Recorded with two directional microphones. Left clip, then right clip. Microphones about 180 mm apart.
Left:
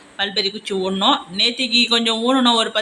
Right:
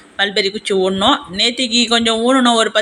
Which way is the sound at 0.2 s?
20° right (ahead or behind).